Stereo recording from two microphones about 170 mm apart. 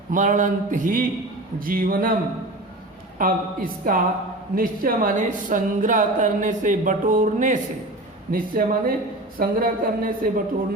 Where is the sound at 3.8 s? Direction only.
55° right (ahead or behind).